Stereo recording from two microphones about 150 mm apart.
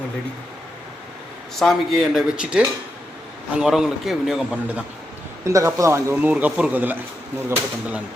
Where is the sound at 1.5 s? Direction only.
Centre (ahead or behind).